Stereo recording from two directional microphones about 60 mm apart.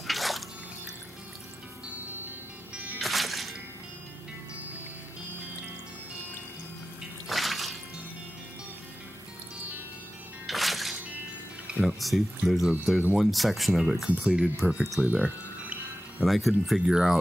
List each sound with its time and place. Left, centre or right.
0.0 s drip: centre
3.0 s music: centre
7.2 s water: centre
10.4 s music: centre
11.8 s speech: centre
14.6 s speech: right
16.3 s speech: centre